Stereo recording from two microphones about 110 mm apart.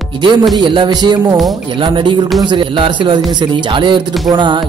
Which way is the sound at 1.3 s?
Centre (ahead or behind).